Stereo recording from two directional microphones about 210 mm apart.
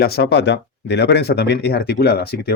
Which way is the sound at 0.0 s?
50° left (ahead or behind).